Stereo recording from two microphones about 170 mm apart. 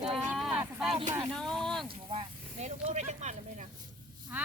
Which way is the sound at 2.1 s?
40° right (ahead or behind).